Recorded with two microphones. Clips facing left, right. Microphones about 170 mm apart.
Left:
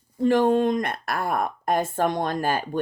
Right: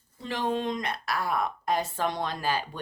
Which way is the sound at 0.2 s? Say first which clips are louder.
Left 11 dB; 50° left (ahead or behind).